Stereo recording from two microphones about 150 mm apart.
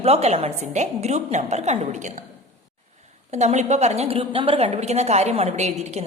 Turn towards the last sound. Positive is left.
turn(degrees=-45)  # may be behind; listen again after turning